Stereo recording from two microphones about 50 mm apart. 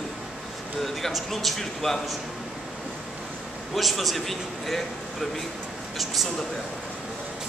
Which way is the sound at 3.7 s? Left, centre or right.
Centre.